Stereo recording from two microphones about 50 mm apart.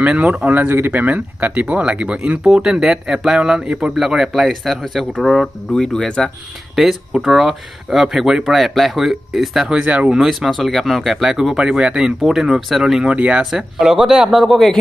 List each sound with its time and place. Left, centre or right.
0.0 s speech: right
2.5 s speech: centre
5.7 s speech: centre
6.7 s speech: centre
9.7 s speech: right
10.1 s speech: centre
11.4 s speech: centre
13.0 s speech: right
13.5 s speech: centre
14.4 s speech: centre